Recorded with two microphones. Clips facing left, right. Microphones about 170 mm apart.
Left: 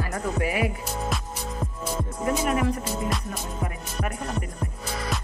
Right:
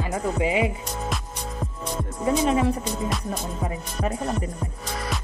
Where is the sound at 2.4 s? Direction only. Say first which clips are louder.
Right 4 dB; 25° right (ahead or behind).